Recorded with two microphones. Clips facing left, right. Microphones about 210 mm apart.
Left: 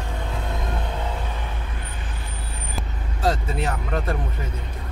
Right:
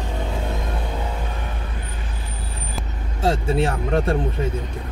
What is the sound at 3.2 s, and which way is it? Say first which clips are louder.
Speech: right 4 dB; 30° right (ahead or behind).